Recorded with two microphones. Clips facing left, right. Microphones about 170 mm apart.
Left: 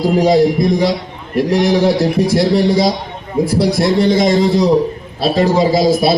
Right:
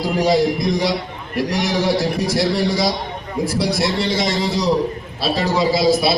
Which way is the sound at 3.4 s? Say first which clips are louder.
Left 6 dB; 50° left (ahead or behind).